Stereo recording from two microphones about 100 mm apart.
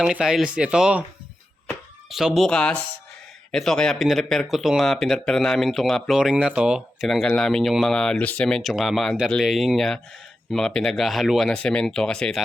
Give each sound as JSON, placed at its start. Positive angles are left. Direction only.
{"t": 0.0, "sound": "speech", "side_deg": -5}
{"t": 2.0, "sound": "speech", "side_deg": -5}
{"t": 2.5, "sound": "speech", "side_deg": 10}